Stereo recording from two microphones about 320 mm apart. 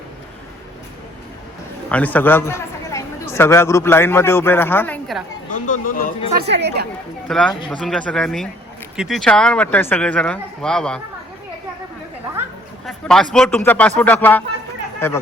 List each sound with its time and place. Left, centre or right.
1.9 s speech: centre
5.5 s speech: left
6.4 s speech: right
7.3 s speech: centre
12.8 s a sound: centre
13.3 s speech: centre